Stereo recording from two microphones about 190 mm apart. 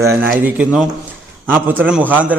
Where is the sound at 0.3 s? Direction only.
10° right (ahead or behind).